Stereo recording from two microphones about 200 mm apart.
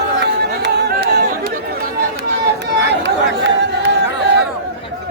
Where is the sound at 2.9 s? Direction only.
60° right (ahead or behind).